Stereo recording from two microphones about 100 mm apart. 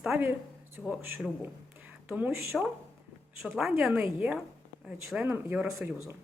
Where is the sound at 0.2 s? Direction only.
20° right (ahead or behind).